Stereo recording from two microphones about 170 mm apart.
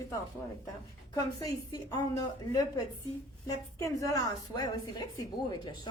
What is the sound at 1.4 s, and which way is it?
A woman's voice, 25° left (ahead or behind).